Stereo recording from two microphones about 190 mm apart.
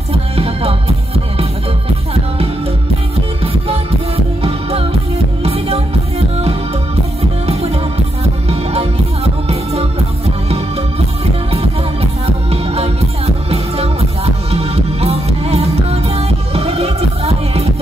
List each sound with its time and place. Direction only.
0.1 s music: 30° right (ahead or behind)
4.4 s music: 30° right (ahead or behind)
11.5 s music: 30° right (ahead or behind)